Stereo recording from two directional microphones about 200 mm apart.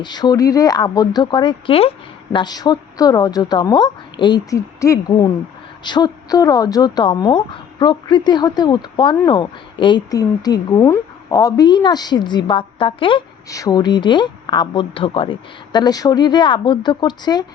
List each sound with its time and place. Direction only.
0.0 s a woman's voice: 20° left (ahead or behind)